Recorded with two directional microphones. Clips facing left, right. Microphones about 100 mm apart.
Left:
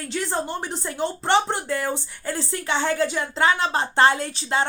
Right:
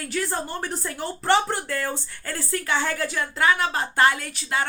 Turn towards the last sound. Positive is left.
turn(degrees=30)  # may be behind; listen again after turning